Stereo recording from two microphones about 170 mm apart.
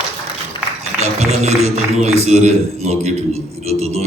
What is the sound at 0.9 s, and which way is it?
A man's voice, 40° right (ahead or behind).